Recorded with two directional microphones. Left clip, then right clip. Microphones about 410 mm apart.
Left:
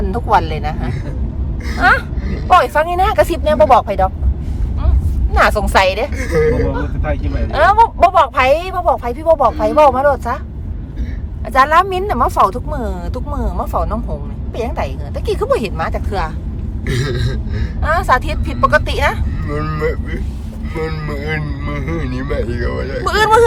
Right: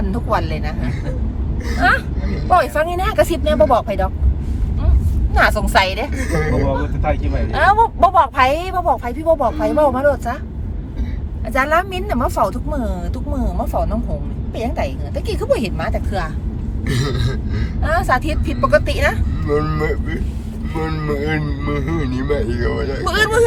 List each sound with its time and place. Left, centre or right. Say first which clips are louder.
0.1 s speech: left 7 dB; centre
5.3 s speech: left 2 dB; centre
6.1 s speech: left 6 dB; centre
7.5 s speech: left 3 dB; centre
11.4 s speech: left 6 dB; centre
16.8 s speech: left 2 dB; centre
17.8 s speech: left 3 dB; centre
19.5 s speech: right 1 dB; centre
23.0 s speech: left 5 dB; centre